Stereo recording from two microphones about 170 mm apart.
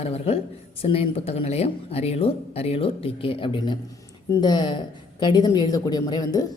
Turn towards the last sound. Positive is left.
turn(degrees=20)  # may be behind; listen again after turning